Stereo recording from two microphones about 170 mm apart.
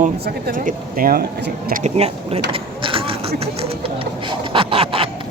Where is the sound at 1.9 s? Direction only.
35° right (ahead or behind).